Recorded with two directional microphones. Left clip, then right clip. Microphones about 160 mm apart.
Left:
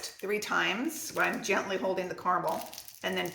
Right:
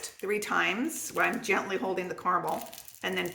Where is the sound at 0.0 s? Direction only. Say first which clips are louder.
Right 1 dB; 50° right (ahead or behind).